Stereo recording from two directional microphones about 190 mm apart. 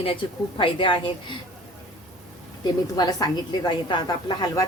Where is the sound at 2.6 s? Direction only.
20° left (ahead or behind).